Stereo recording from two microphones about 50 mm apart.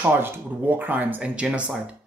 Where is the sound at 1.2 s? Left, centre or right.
Right.